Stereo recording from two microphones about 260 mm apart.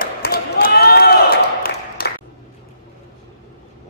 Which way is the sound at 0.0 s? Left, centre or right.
Left.